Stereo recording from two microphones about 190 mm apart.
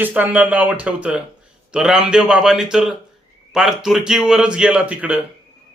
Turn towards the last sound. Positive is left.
turn(degrees=-5)  # may be behind; listen again after turning